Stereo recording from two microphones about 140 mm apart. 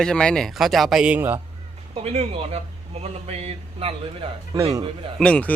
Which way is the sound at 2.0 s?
45° right (ahead or behind).